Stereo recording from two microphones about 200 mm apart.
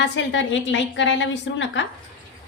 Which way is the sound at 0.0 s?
65° left (ahead or behind).